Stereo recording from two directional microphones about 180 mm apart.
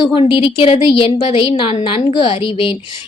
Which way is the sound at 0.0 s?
30° left (ahead or behind).